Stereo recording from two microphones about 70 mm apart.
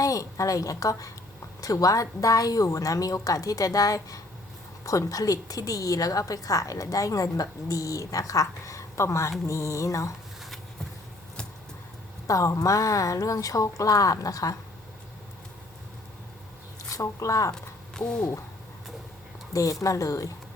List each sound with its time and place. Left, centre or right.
0.0 s a woman's voice: left
12.3 s a woman's voice: left
16.9 s a woman's voice: left
17.5 s speech: centre
19.5 s a woman's voice: left